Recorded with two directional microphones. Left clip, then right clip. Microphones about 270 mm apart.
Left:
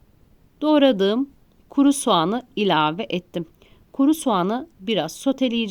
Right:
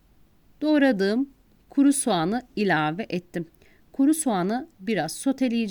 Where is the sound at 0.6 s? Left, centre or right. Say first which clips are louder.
Left 4 dB; right.